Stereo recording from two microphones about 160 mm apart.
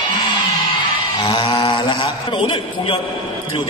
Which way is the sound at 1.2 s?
25° left (ahead or behind).